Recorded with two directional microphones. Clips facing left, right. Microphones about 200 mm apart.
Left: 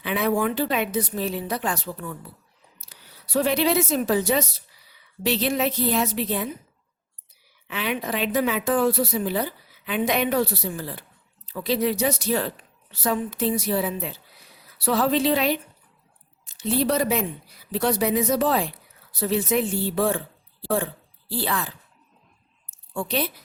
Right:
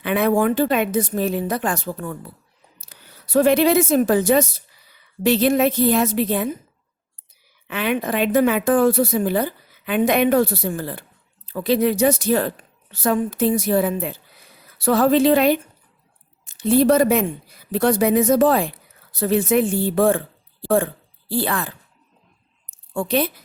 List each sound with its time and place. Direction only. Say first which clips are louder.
0.0 s a woman's voice: right 5 dB; 50° right (ahead or behind)
7.7 s a woman's voice: right 5 dB; 55° right (ahead or behind)
23.0 s a woman's voice: right 6 dB; 50° right (ahead or behind)